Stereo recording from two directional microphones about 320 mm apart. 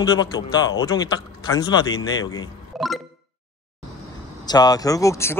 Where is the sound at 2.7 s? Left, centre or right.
Centre.